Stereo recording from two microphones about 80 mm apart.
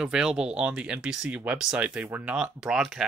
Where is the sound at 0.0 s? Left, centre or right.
Centre.